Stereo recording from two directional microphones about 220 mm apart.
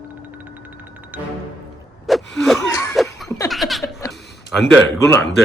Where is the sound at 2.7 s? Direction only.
10° left (ahead or behind).